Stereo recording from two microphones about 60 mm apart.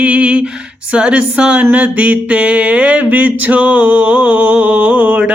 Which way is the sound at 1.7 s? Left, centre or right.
Right.